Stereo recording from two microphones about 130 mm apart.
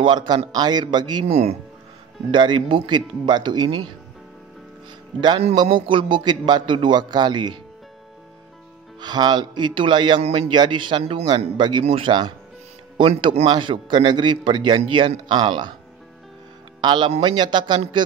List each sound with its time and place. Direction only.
0.0 s a man's voice: 35° right (ahead or behind)
1.2 s speech: 55° right (ahead or behind)
2.3 s a man's voice: 35° right (ahead or behind)
5.6 s a man's voice: 40° right (ahead or behind)
9.0 s a man's voice: 35° right (ahead or behind)
10.2 s a man's voice: 55° right (ahead or behind)
10.5 s a man's voice: 35° right (ahead or behind); by 13.5 s 55° right (ahead or behind)
13.5 s a man's voice: 35° right (ahead or behind)
16.8 s a man's voice: 35° right (ahead or behind)